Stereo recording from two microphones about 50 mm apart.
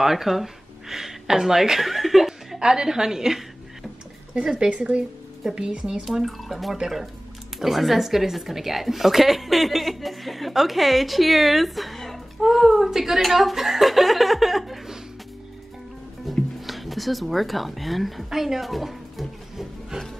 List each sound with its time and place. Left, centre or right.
0.0 s speech: centre
2.6 s a woman's voice: centre
6.2 s a woman's voice: centre
16.3 s speech: centre